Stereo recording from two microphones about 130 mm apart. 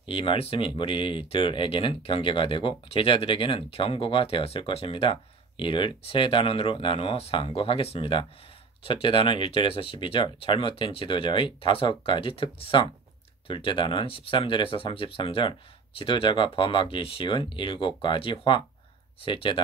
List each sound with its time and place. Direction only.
0.0 s speech: 40° left (ahead or behind)